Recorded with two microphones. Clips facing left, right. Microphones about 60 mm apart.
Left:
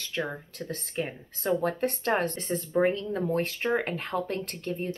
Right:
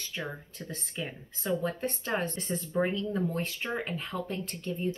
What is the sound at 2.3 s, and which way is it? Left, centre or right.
Speech, left.